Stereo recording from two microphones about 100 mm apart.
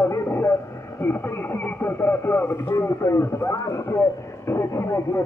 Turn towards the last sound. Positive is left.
turn(degrees=30)  # may be behind; listen again after turning